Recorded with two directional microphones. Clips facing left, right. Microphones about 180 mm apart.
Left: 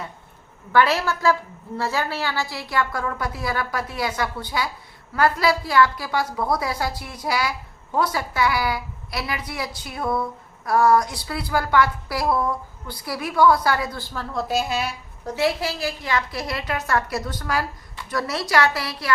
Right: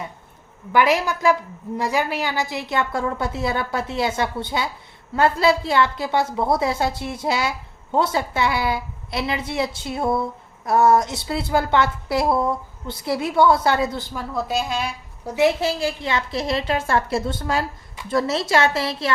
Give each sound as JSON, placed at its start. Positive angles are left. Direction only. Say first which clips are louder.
{"t": 0.7, "sound": "a woman's voice", "louder": "right 1 dB", "side_deg": -15}
{"t": 14.3, "sound": "a woman's voice", "louder": "even", "side_deg": 0}
{"t": 15.2, "sound": "a woman's voice", "louder": "right 5 dB", "side_deg": -10}
{"t": 15.4, "sound": "a woman's voice", "louder": "right 4 dB", "side_deg": -25}